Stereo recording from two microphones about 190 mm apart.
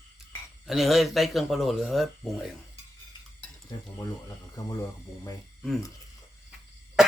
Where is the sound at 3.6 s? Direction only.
20° left (ahead or behind).